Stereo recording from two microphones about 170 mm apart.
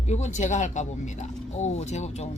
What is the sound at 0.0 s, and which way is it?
A woman's voice, 45° left (ahead or behind).